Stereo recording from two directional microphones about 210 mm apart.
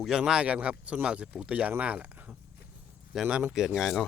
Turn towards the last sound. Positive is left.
turn(degrees=0)  # may be behind; listen again after turning